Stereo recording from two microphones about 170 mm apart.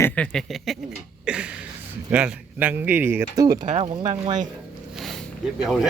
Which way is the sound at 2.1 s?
10° right (ahead or behind).